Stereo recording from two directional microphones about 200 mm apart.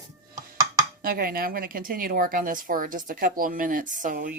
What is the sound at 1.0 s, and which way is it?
Speech, 45° right (ahead or behind).